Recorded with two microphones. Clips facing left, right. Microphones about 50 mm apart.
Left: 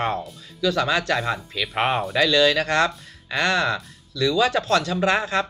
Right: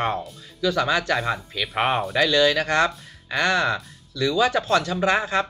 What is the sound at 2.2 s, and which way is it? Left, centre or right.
Speech, centre.